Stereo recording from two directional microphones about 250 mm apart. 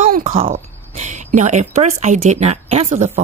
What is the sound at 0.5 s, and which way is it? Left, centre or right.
A woman's voice, right.